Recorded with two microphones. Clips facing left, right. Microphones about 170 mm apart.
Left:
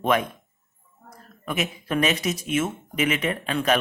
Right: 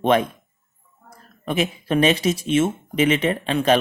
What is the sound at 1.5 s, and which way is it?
Speech, 30° right (ahead or behind).